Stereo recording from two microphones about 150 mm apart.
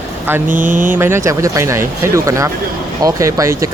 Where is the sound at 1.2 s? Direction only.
20° right (ahead or behind).